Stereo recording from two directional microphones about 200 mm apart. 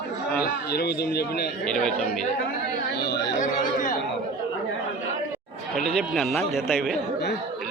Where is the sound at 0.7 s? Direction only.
50° left (ahead or behind).